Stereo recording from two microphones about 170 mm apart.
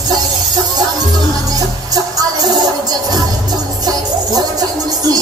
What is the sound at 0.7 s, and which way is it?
Music, 25° right (ahead or behind).